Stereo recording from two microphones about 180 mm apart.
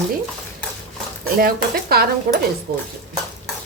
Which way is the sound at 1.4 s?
55° right (ahead or behind).